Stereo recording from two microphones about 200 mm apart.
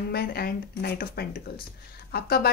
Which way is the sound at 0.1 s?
50° left (ahead or behind).